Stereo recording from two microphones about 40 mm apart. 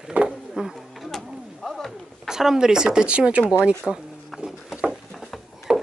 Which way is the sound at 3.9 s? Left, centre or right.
Centre.